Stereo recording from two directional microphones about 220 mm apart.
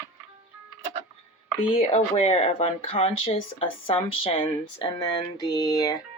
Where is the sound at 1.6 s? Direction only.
25° left (ahead or behind).